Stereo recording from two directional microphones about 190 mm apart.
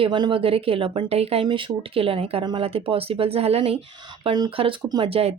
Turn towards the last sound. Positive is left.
turn(degrees=-30)  # may be behind; listen again after turning